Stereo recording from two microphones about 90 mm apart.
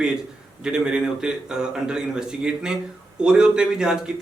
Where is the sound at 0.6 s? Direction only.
10° right (ahead or behind).